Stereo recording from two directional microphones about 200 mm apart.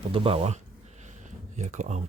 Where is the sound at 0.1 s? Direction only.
30° right (ahead or behind).